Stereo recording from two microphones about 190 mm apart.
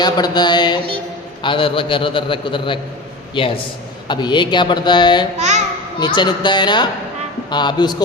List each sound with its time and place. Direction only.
0.0 s a man's voice: 20° left (ahead or behind)
5.4 s a sound: 40° right (ahead or behind)
6.1 s a man's voice: 25° left (ahead or behind)